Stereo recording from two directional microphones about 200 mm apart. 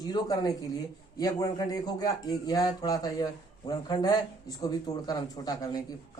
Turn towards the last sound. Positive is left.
turn(degrees=20)  # may be behind; listen again after turning